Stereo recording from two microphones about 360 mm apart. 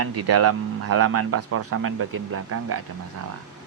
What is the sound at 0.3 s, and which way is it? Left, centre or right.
Speech, right.